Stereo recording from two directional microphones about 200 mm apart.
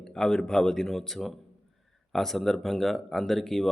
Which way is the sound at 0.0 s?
5° left (ahead or behind).